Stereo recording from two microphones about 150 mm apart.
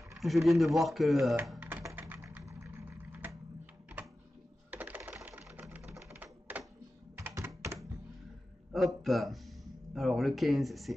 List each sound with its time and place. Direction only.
0.1 s speech: centre (ahead or behind)
1.6 s typing: 15° right (ahead or behind)
4.6 s typewriter: 10° right (ahead or behind)
6.0 s typing: 10° right (ahead or behind)
7.2 s computer keyboard: 20° right (ahead or behind)
9.0 s speech: centre (ahead or behind)